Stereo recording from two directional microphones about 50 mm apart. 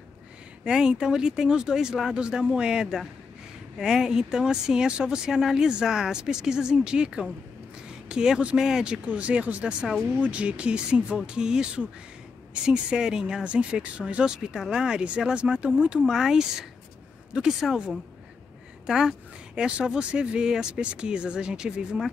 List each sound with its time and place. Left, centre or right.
0.7 s speech: centre
18.9 s speech: centre